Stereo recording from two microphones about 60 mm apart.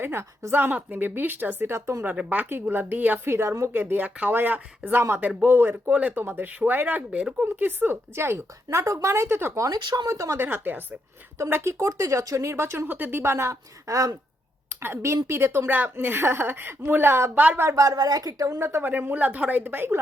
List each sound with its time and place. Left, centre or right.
0.0 s a woman's voice: right
2.1 s a woman's voice: right
3.2 s speech: right
3.7 s a woman's voice: right
5.9 s a woman's voice: right
8.1 s speech: right
8.8 s speech: right
9.6 s speech: right
10.3 s a woman's voice: right
12.9 s speech: right
14.8 s a woman's voice: right
17.3 s speech: right
17.7 s speech: right
18.8 s a woman's voice: right